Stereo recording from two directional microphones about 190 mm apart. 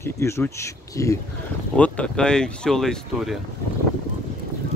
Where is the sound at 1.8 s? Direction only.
5° left (ahead or behind).